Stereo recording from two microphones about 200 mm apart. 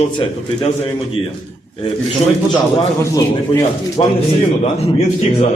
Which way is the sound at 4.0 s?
25° left (ahead or behind).